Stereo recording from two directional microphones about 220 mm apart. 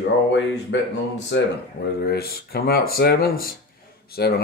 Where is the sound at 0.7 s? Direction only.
55° left (ahead or behind).